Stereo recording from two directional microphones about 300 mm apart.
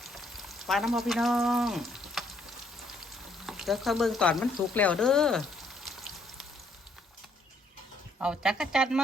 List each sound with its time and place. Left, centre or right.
0.0 s frying: centre
8.2 s speech: centre